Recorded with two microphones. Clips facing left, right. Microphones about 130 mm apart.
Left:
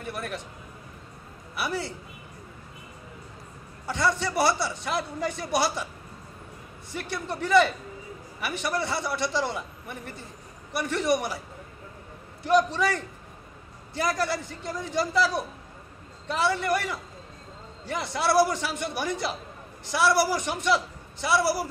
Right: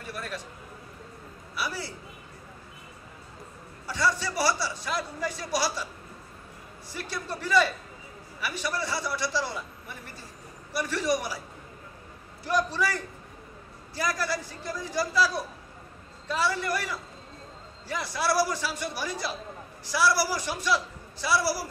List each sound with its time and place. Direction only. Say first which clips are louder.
0.0 s a sound: left 3 dB; 20° left (ahead or behind)
1.6 s a man's voice: left 3 dB; 20° left (ahead or behind)
3.8 s a man's voice: left 2 dB; 20° left (ahead or behind)
7.0 s a man's voice: left 3 dB; 20° left (ahead or behind)
12.4 s a man's voice: left 5 dB; 20° left (ahead or behind)